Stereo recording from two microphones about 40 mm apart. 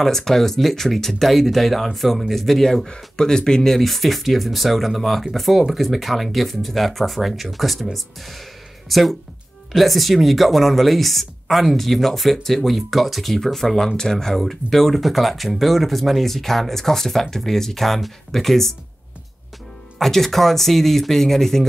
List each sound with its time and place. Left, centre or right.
0.0 s speech: centre
3.7 s speech: centre
20.0 s speech: centre